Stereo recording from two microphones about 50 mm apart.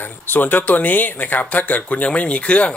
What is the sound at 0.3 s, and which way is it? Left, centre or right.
Speech, left.